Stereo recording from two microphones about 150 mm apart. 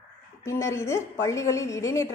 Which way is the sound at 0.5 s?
20° left (ahead or behind).